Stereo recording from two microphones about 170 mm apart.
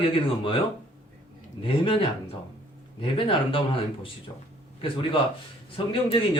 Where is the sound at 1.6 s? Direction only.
30° left (ahead or behind).